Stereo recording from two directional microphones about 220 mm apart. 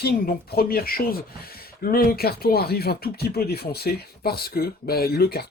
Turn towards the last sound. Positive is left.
turn(degrees=45)  # may be behind; listen again after turning